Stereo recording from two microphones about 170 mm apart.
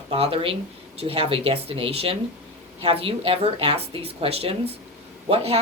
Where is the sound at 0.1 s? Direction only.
35° right (ahead or behind).